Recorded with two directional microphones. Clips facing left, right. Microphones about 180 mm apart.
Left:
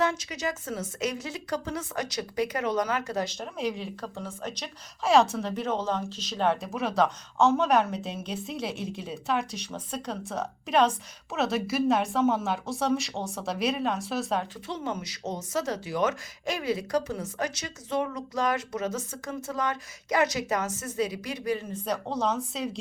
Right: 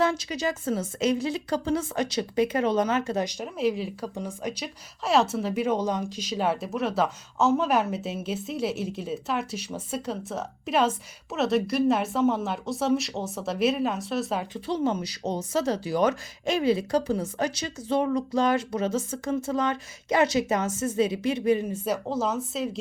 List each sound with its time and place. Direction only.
0.0 s speech: 30° right (ahead or behind)
3.3 s a woman's voice: 5° right (ahead or behind)
14.7 s speech: 35° right (ahead or behind)
21.7 s a woman's voice: 5° right (ahead or behind)